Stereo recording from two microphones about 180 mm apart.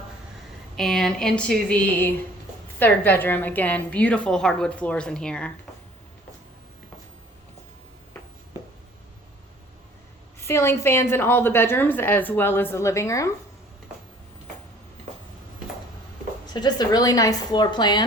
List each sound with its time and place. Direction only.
0.8 s a woman's voice: centre (ahead or behind)
10.4 s a woman's voice: 15° left (ahead or behind)
16.5 s a woman's voice: 25° left (ahead or behind)